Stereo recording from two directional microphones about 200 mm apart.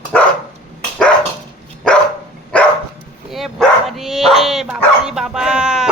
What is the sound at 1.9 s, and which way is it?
Dog, 5° left (ahead or behind).